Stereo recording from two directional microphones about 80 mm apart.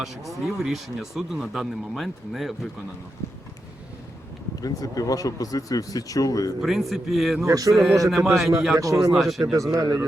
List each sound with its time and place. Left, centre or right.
0.3 s speech: centre
4.6 s speech: left
6.6 s speech: centre
7.4 s a man's voice: right
7.7 s speech: centre
8.8 s a man's voice: right
9.1 s speech: centre
9.4 s a man's voice: right